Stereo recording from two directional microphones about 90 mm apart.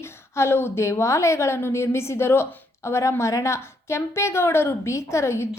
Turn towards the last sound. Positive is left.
turn(degrees=30)  # may be behind; listen again after turning